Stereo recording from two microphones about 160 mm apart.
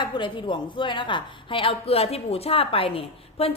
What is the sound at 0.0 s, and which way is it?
A woman's voice, 30° left (ahead or behind).